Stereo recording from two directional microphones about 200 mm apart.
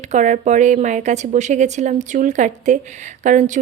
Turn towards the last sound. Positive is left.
turn(degrees=-40)  # may be behind; listen again after turning